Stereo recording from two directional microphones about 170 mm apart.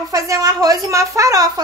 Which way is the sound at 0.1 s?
20° right (ahead or behind).